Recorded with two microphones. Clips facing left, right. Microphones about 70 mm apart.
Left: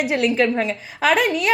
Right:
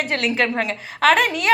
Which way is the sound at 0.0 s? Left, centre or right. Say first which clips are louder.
Left 3 dB; centre.